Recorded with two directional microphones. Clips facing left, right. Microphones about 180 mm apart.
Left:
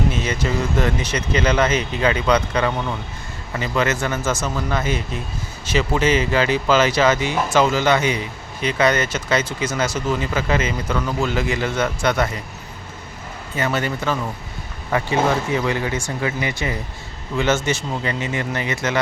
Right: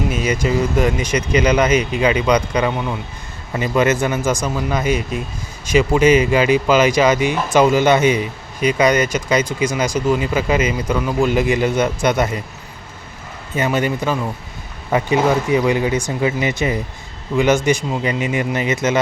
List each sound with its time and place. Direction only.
0.1 s a man's voice: 10° right (ahead or behind)
13.6 s speech: 15° right (ahead or behind)